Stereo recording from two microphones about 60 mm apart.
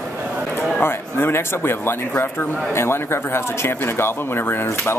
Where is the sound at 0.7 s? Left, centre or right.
Left.